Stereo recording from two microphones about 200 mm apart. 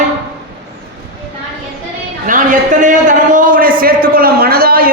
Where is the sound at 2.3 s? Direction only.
40° right (ahead or behind).